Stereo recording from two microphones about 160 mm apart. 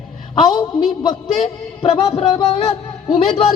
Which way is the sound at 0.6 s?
30° left (ahead or behind).